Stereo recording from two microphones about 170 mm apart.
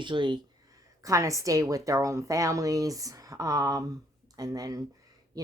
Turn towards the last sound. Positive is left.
turn(degrees=-20)  # may be behind; listen again after turning